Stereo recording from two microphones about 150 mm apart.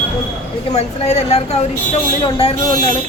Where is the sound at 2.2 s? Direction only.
40° left (ahead or behind).